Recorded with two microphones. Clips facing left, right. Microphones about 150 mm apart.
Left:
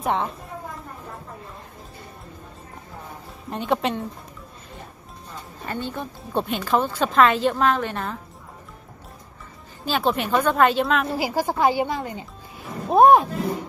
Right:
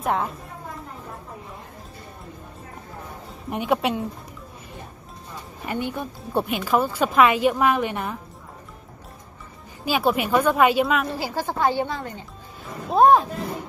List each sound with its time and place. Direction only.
0.0 s a woman's voice: centre (ahead or behind)
3.4 s speech: 10° right (ahead or behind)
5.7 s speech: 15° right (ahead or behind)
9.8 s speech: 10° right (ahead or behind)
11.1 s speech: 10° left (ahead or behind)